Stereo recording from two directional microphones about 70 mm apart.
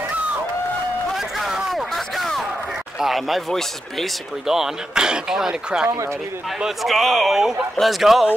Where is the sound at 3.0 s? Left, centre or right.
Centre.